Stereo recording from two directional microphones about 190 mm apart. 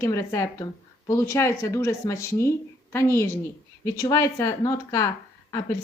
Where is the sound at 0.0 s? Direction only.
15° left (ahead or behind).